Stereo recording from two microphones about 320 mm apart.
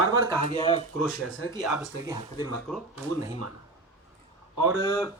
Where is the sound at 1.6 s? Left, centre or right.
Centre.